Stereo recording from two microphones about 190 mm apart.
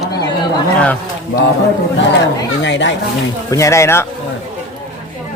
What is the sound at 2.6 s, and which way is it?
Speech, 70° left (ahead or behind).